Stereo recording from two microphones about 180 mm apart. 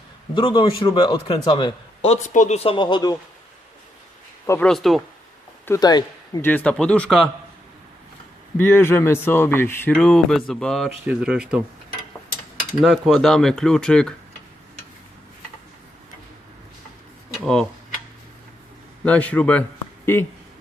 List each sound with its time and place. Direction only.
0.3 s a man's voice: 25° left (ahead or behind)
2.0 s speech: 40° left (ahead or behind); by 3.2 s 25° left (ahead or behind)
4.4 s speech: 15° left (ahead or behind)
4.7 s speech: centre (ahead or behind)
5.6 s speech: 20° left (ahead or behind)
6.4 s speech: 10° left (ahead or behind)
8.5 s speech: 10° left (ahead or behind); by 11.6 s 5° right (ahead or behind)
12.8 s speech: centre (ahead or behind)
17.4 s speech: 5° left (ahead or behind)
19.0 s speech: 5° left (ahead or behind)